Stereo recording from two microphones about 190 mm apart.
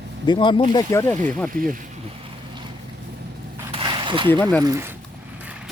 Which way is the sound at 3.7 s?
25° right (ahead or behind).